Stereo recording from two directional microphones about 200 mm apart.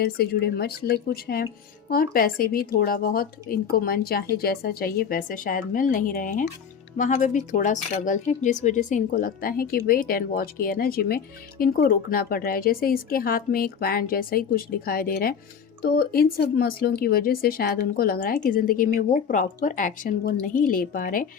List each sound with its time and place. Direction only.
0.0 s speech: 50° left (ahead or behind)